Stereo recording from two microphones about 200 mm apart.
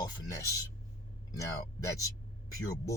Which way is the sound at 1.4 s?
15° left (ahead or behind).